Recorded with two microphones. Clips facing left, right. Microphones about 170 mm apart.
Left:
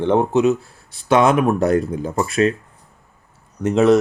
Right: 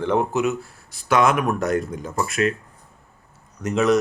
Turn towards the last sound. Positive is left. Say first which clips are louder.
# left 5 dB
turn(degrees=30)  # may be behind; listen again after turning